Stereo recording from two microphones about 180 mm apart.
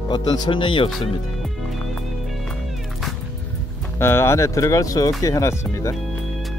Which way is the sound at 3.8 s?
15° left (ahead or behind).